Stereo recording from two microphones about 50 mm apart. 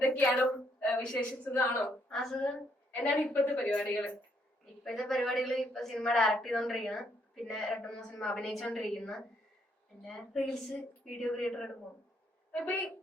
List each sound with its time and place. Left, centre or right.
0.3 s a woman's voice: left
1.5 s a woman's voice: left
2.0 s a woman's voice: centre
2.3 s a woman's voice: centre
3.0 s a woman's voice: left
3.2 s a woman's voice: left
4.9 s a woman's voice: centre
12.5 s a woman's voice: left